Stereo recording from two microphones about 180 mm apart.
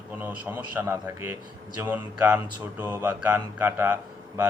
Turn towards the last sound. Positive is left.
turn(degrees=-15)  # may be behind; listen again after turning